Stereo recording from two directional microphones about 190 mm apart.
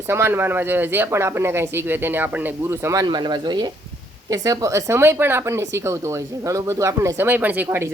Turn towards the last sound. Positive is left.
turn(degrees=-15)  # may be behind; listen again after turning